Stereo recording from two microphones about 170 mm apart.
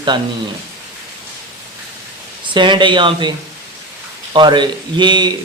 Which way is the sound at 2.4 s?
30° right (ahead or behind).